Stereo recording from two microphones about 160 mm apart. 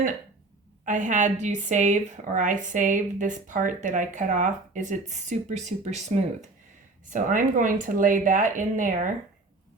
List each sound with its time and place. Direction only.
0.9 s a woman's voice: 50° right (ahead or behind)
7.1 s speech: 55° right (ahead or behind)